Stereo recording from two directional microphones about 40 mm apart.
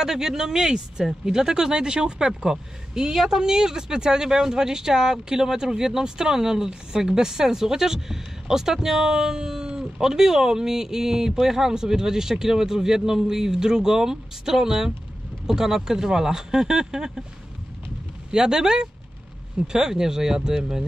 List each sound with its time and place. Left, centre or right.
0.0 s speech: centre
18.3 s speech: centre